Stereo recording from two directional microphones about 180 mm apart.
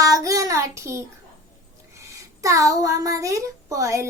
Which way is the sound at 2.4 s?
20° right (ahead or behind).